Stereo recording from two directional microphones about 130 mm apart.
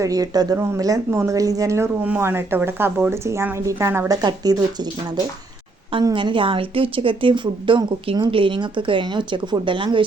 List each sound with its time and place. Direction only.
0.0 s speech: 25° right (ahead or behind)